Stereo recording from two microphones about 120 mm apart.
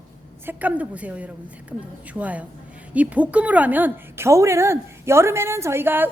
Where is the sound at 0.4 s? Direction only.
15° right (ahead or behind).